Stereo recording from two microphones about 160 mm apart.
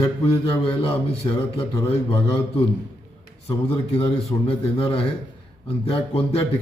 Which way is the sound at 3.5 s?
40° left (ahead or behind).